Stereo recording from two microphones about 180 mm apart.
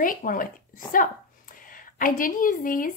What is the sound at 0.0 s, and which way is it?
A woman's voice, 50° left (ahead or behind).